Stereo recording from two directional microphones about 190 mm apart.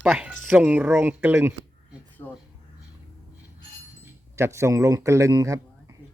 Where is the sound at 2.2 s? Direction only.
15° left (ahead or behind).